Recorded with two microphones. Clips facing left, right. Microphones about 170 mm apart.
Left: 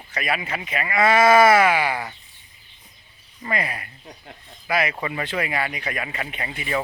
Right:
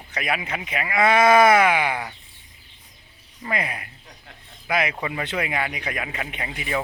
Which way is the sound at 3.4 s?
10° right (ahead or behind).